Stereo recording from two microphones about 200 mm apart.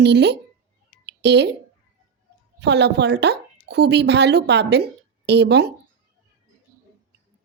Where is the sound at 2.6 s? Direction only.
60° right (ahead or behind).